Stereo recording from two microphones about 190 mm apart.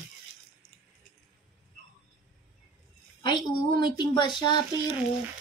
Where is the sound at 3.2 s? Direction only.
25° left (ahead or behind).